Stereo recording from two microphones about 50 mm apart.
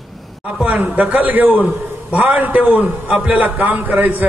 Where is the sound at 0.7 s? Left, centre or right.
Right.